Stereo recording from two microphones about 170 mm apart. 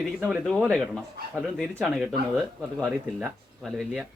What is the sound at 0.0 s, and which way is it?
Speech, centre (ahead or behind).